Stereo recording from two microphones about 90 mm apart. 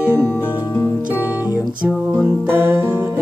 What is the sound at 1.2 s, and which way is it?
Music, 20° right (ahead or behind).